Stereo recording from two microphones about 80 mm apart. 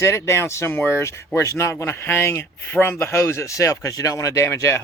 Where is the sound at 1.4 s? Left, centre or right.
Left.